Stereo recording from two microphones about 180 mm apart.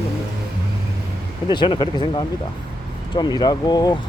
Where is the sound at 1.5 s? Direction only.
25° left (ahead or behind).